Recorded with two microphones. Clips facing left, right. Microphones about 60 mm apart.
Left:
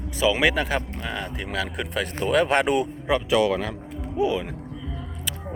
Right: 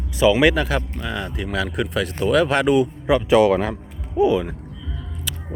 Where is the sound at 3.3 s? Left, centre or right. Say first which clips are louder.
Right 6 dB; right.